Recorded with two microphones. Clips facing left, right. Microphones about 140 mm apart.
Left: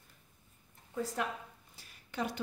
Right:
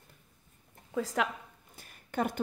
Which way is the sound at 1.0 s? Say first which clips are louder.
Right 5 dB; 90° right.